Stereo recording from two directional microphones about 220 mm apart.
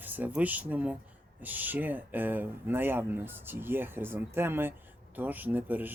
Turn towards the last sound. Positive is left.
turn(degrees=-10)  # may be behind; listen again after turning